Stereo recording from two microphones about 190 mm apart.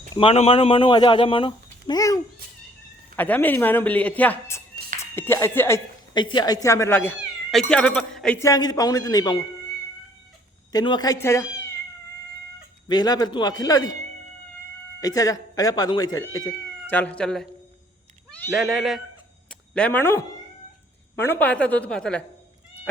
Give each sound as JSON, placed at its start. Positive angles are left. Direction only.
{"t": 0.1, "sound": "speech", "side_deg": 30}
{"t": 6.1, "sound": "speech", "side_deg": 25}
{"t": 8.4, "sound": "speech", "side_deg": 20}
{"t": 10.7, "sound": "speech", "side_deg": 20}
{"t": 12.9, "sound": "speech", "side_deg": 20}
{"t": 15.0, "sound": "speech", "side_deg": 20}
{"t": 16.9, "sound": "speech", "side_deg": 5}
{"t": 18.3, "sound": "cat", "side_deg": 10}
{"t": 18.5, "sound": "speech", "side_deg": 0}